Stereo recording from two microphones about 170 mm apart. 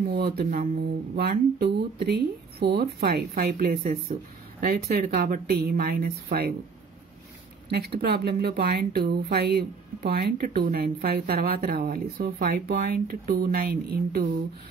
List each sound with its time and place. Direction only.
0.1 s speech: 65° right (ahead or behind)
7.7 s speech: 70° right (ahead or behind)